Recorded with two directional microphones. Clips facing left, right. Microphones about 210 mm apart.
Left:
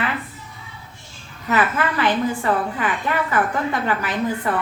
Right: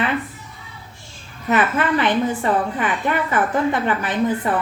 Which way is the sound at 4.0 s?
20° right (ahead or behind).